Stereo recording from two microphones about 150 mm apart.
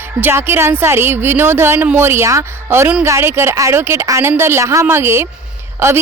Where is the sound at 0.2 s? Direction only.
15° right (ahead or behind).